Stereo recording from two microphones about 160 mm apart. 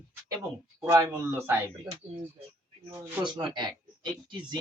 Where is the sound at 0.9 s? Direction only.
20° right (ahead or behind).